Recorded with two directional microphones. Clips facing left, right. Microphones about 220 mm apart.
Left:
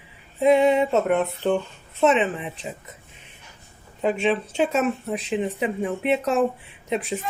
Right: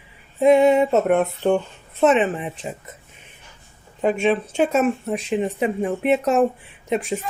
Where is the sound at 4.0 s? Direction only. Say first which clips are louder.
Right 3 dB; 50° right (ahead or behind).